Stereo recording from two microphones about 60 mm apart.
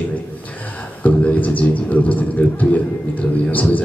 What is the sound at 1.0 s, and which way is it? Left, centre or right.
A man's voice, left.